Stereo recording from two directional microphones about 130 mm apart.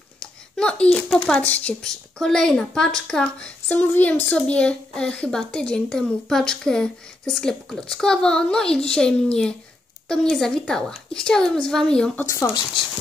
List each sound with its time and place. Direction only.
0.2 s speech: 5° left (ahead or behind)
12.3 s speech: 20° left (ahead or behind)